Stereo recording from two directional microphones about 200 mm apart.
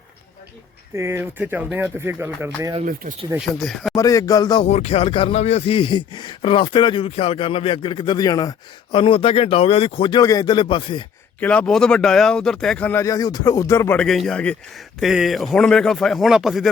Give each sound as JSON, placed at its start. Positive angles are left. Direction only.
{"t": 0.9, "sound": "speech", "side_deg": -15}
{"t": 2.8, "sound": "speech", "side_deg": -40}
{"t": 3.3, "sound": "speech", "side_deg": 0}
{"t": 3.9, "sound": "a sound", "side_deg": 15}
{"t": 4.7, "sound": "speech", "side_deg": 30}
{"t": 11.3, "sound": "speech", "side_deg": 5}